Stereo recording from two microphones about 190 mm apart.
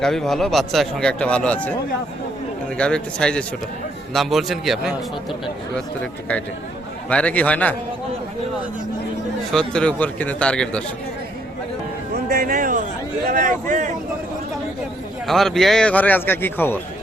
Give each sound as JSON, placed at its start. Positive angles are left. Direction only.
{"t": 0.0, "sound": "speech", "side_deg": 0}
{"t": 2.7, "sound": "a man's voice", "side_deg": 5}
{"t": 9.5, "sound": "speech", "side_deg": 5}
{"t": 12.1, "sound": "a sound", "side_deg": -50}
{"t": 13.2, "sound": "speech", "side_deg": -45}
{"t": 15.3, "sound": "a man's voice", "side_deg": 0}